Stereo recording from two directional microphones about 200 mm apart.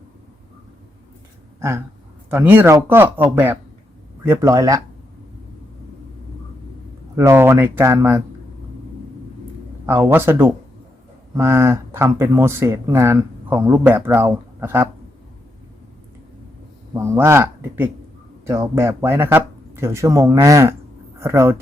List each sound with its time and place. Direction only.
2.3 s speech: 10° right (ahead or behind)
7.2 s speech: 10° right (ahead or behind)
9.8 s speech: 10° right (ahead or behind)
16.9 s speech: 15° right (ahead or behind)